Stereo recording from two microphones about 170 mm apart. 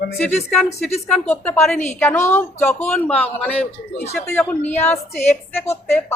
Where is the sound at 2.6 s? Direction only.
40° left (ahead or behind).